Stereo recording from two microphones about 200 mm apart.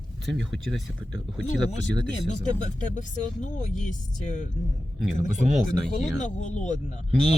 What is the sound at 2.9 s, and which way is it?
Speech, 40° left (ahead or behind).